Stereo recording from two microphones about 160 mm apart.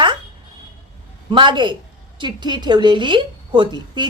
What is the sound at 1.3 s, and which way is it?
A woman's voice, 30° right (ahead or behind).